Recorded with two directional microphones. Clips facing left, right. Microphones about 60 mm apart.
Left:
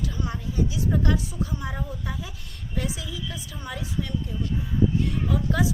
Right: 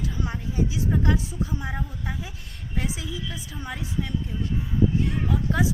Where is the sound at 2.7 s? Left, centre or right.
Right.